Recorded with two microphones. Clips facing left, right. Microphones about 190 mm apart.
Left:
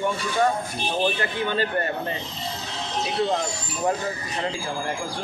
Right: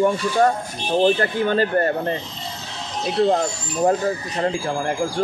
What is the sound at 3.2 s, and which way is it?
Speech, 40° right (ahead or behind).